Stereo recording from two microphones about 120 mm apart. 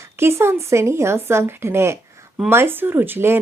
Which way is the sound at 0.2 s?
20° right (ahead or behind).